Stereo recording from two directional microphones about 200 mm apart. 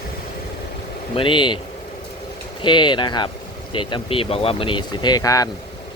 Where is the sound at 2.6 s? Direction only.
25° left (ahead or behind).